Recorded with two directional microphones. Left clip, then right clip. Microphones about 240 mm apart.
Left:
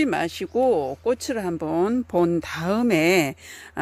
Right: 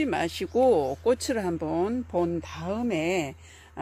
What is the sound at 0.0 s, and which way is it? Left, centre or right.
Speech, left.